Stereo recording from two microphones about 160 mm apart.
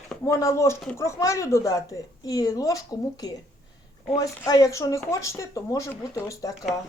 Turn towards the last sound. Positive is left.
turn(degrees=20)  # may be behind; listen again after turning